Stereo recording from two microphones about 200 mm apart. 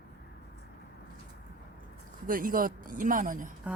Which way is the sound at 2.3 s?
45° right (ahead or behind).